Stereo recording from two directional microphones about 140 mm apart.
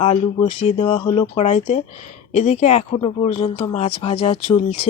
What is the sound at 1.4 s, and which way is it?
Speech, 50° left (ahead or behind).